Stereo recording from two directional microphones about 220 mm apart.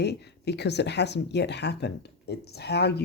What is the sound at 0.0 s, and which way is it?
Speech, 50° left (ahead or behind).